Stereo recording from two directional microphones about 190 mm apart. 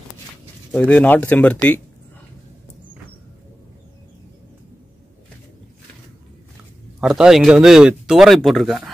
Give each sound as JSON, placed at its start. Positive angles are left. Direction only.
{"t": 0.7, "sound": "speech", "side_deg": 10}
{"t": 7.0, "sound": "speech", "side_deg": 0}